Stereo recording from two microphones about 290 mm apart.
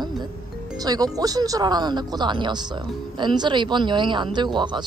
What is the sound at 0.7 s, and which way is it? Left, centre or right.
Speech, centre.